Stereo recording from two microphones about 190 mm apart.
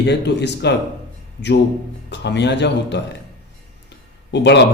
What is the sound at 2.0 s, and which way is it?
A man's voice, 65° left (ahead or behind).